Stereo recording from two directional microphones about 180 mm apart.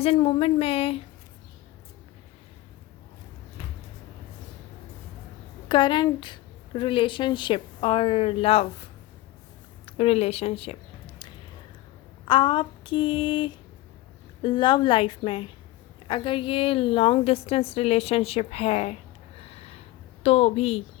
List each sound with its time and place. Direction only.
0.0 s a woman's voice: 30° left (ahead or behind)
5.6 s a woman's voice: 25° left (ahead or behind)
9.8 s a sound: 35° left (ahead or behind)
12.2 s a woman's voice: 25° left (ahead or behind)
19.4 s snort: 35° left (ahead or behind)
20.2 s a woman's voice: 35° left (ahead or behind)